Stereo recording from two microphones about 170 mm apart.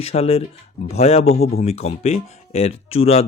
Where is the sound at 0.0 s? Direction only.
40° left (ahead or behind).